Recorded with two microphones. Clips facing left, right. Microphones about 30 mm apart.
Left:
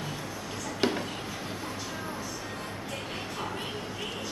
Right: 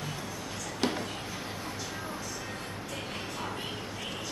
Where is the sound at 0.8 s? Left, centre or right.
Centre.